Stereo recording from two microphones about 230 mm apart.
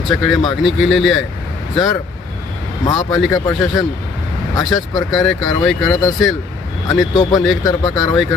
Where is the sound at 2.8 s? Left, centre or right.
Centre.